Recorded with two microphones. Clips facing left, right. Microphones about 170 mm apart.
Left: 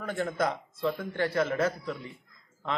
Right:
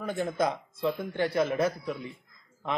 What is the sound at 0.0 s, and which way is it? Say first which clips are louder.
Speech: right 1 dB; 15° right (ahead or behind).